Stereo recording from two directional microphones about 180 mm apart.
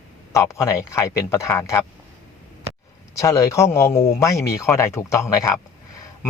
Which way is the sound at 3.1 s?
15° left (ahead or behind).